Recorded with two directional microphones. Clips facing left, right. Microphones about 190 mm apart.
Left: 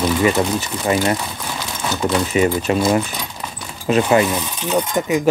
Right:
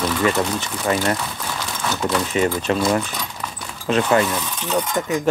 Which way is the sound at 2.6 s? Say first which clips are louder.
Left 3 dB; 10° left (ahead or behind).